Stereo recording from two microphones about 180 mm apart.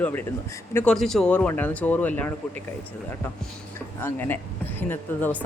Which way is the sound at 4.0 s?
10° left (ahead or behind).